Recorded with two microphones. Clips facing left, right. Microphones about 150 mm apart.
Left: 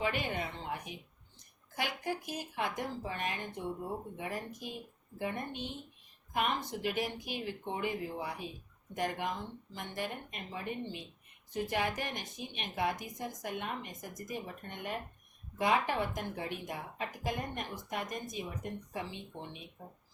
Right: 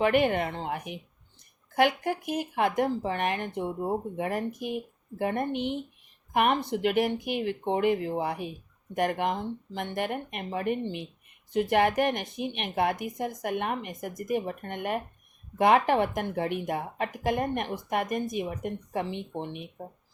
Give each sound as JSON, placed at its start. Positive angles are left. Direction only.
{"t": 0.0, "sound": "a woman's voice", "side_deg": -65}